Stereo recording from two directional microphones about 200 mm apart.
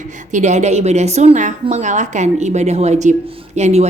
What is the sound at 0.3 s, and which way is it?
A woman's voice, 35° right (ahead or behind).